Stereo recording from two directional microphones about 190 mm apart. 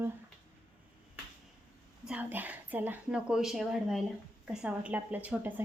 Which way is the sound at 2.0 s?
5° right (ahead or behind).